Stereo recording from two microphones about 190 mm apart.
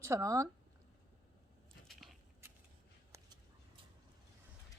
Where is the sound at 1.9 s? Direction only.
Centre (ahead or behind).